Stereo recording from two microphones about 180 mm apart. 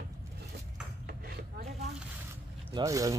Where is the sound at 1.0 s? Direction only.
60° right (ahead or behind).